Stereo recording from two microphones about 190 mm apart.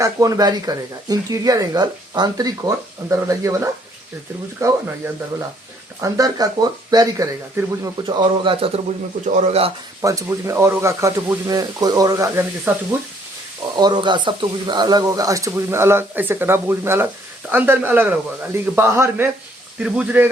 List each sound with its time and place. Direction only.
0.0 s speech: 20° right (ahead or behind)
6.0 s speech: 20° right (ahead or behind)
10.0 s speech: 15° right (ahead or behind)
13.7 s speech: 20° right (ahead or behind)